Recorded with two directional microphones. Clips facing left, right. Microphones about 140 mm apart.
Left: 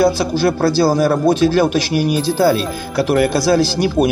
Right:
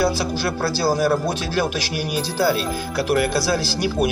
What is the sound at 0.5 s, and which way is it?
Speech, 50° left (ahead or behind).